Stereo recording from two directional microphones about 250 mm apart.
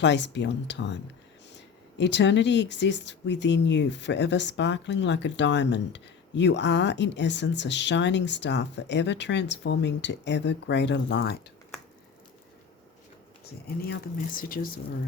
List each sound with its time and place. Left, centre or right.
0.0 s speech: left
13.8 s speech: left